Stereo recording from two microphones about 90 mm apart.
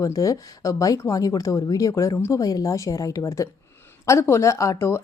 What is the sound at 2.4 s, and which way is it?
A woman's voice, 45° left (ahead or behind).